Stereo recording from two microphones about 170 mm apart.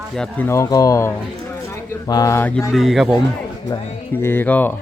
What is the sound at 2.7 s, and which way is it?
Speech, centre (ahead or behind).